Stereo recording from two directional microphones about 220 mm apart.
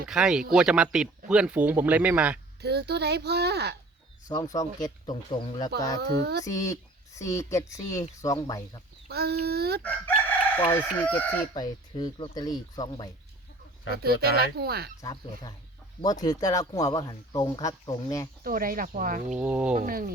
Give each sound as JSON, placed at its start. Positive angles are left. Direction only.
{"t": 0.1, "sound": "speech", "side_deg": -5}
{"t": 2.6, "sound": "a child's voice", "side_deg": -50}
{"t": 4.3, "sound": "speech", "side_deg": 15}
{"t": 6.0, "sound": "a child's voice", "side_deg": -50}
{"t": 6.4, "sound": "speech", "side_deg": 15}
{"t": 9.0, "sound": "a child's voice", "side_deg": -45}
{"t": 10.7, "sound": "speech", "side_deg": 10}
{"t": 11.5, "sound": "speech", "side_deg": 20}
{"t": 14.0, "sound": "a child's voice", "side_deg": -45}
{"t": 15.0, "sound": "speech", "side_deg": 15}
{"t": 18.4, "sound": "speech", "side_deg": -40}
{"t": 19.3, "sound": "speech", "side_deg": -5}
{"t": 19.7, "sound": "speech", "side_deg": -40}